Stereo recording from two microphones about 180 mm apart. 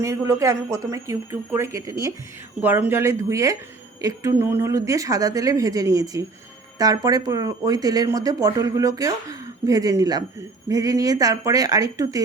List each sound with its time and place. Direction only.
0.0 s speech: 15° right (ahead or behind)